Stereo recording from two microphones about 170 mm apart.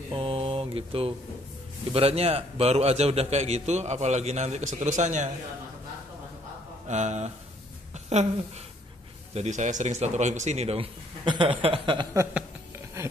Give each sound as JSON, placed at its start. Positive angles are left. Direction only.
{"t": 0.1, "sound": "mantra", "side_deg": -30}
{"t": 1.9, "sound": "a man's voice", "side_deg": -35}
{"t": 6.9, "sound": "a man's voice", "side_deg": -40}
{"t": 9.3, "sound": "a man's voice", "side_deg": -40}
{"t": 12.1, "sound": "a sound", "side_deg": -15}